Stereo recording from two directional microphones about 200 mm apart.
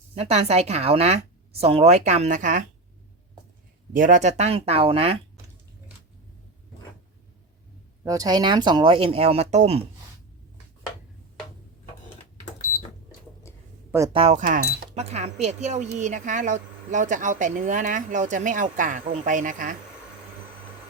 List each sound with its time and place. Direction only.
0.1 s speech: 30° right (ahead or behind)
3.9 s speech: 40° right (ahead or behind)
8.0 s speech: 15° right (ahead or behind); by 9.8 s 35° right (ahead or behind)
14.1 s speech: 30° right (ahead or behind)